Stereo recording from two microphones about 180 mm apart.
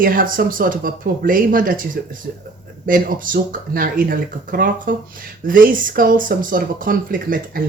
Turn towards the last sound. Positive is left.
turn(degrees=-50)  # may be behind; listen again after turning